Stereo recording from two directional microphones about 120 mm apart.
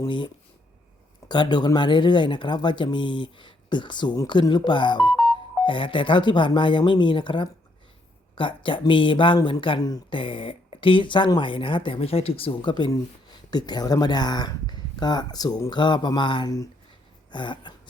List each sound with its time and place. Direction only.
1.3 s speech: 40° left (ahead or behind)
9.8 s speech: 30° left (ahead or behind)
10.2 s speech: 45° left (ahead or behind)